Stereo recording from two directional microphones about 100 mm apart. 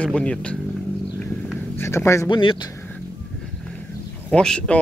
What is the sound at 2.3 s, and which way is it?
Speech, 55° left (ahead or behind).